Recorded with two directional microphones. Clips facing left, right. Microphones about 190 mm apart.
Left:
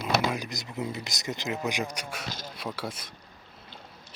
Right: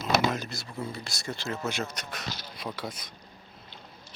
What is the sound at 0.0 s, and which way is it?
Speech, 10° left (ahead or behind).